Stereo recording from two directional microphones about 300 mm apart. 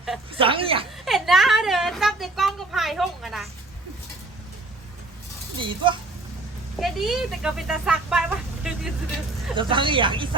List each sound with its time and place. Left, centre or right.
0.3 s speech: centre
1.0 s a sound: centre
5.5 s speech: centre
6.7 s speech: centre
9.6 s speech: centre